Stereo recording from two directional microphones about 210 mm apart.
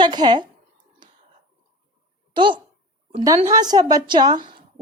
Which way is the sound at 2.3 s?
25° right (ahead or behind).